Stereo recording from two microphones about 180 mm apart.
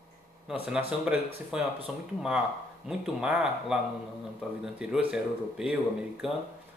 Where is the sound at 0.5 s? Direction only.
5° right (ahead or behind).